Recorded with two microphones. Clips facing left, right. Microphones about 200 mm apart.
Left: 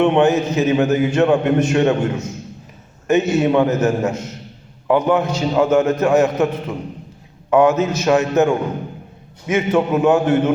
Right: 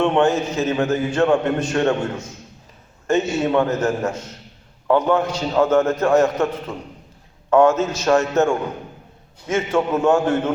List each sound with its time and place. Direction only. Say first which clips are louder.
0.0 s a man's voice: left 3 dB; 20° left (ahead or behind)
7.5 s a man's voice: left 1 dB; 15° left (ahead or behind)
9.5 s a man's voice: left 3 dB; 15° left (ahead or behind)